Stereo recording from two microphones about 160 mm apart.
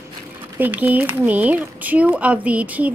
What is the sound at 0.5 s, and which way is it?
A woman's voice, 10° right (ahead or behind).